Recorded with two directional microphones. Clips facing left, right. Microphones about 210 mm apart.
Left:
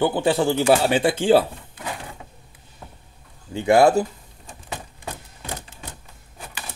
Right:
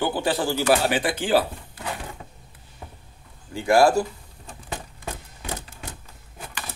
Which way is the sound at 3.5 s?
20° left (ahead or behind).